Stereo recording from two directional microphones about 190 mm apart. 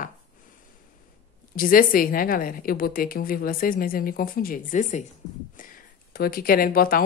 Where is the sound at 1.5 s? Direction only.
50° left (ahead or behind).